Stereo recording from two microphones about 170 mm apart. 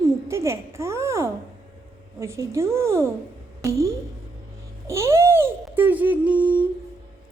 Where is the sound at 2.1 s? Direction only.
15° right (ahead or behind).